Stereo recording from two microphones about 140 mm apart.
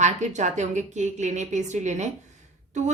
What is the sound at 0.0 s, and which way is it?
Speech, 55° right (ahead or behind).